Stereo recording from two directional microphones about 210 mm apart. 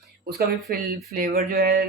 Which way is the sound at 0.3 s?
45° right (ahead or behind).